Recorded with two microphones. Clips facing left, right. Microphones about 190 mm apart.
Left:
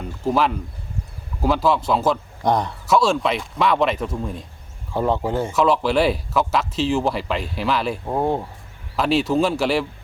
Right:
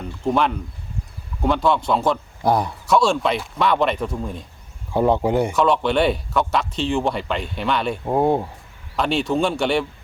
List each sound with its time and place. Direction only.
0.3 s speech: centre (ahead or behind)
4.9 s speech: 15° right (ahead or behind)
5.5 s speech: centre (ahead or behind)
8.0 s speech: 15° right (ahead or behind)
9.0 s speech: centre (ahead or behind)